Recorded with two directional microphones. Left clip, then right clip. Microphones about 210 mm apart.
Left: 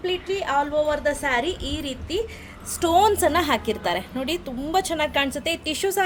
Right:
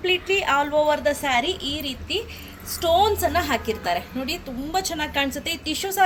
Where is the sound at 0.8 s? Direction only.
20° left (ahead or behind); by 2.2 s 40° left (ahead or behind).